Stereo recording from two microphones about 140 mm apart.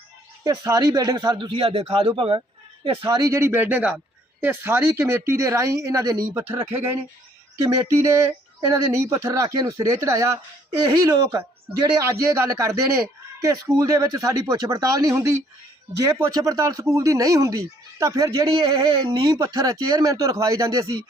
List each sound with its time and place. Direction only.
0.4 s speech: 25° right (ahead or behind)
3.2 s speech: 20° right (ahead or behind)
7.6 s speech: 20° right (ahead or behind)